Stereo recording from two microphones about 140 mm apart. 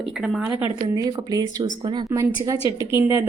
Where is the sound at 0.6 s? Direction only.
25° right (ahead or behind).